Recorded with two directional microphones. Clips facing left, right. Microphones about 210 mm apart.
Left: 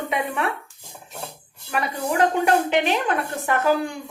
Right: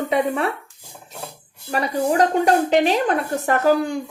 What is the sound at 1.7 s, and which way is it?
Speech, 35° right (ahead or behind).